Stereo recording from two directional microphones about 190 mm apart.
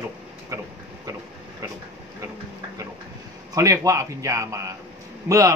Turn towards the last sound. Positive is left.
turn(degrees=-15)  # may be behind; listen again after turning